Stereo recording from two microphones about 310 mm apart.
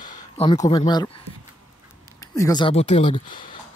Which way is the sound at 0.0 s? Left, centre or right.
Centre.